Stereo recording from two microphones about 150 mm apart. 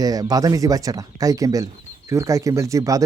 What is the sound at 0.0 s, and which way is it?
A man's voice, 25° right (ahead or behind).